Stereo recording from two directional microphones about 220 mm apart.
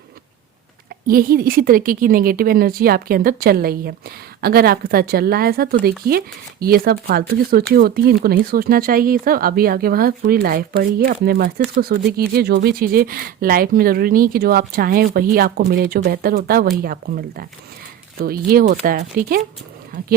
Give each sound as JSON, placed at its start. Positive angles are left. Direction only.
{"t": 1.0, "sound": "a woman's voice", "side_deg": -40}